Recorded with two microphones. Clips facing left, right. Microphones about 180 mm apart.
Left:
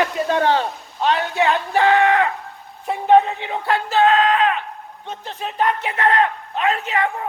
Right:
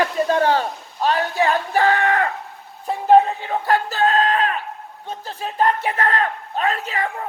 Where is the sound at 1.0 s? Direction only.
40° right (ahead or behind).